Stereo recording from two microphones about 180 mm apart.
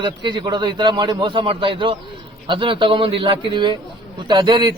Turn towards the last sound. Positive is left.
turn(degrees=-25)  # may be behind; listen again after turning